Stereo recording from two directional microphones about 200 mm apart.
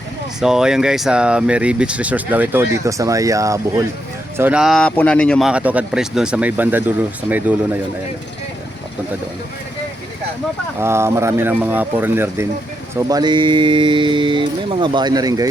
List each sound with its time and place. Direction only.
0.3 s speech: 5° right (ahead or behind)
10.8 s speech: 10° right (ahead or behind)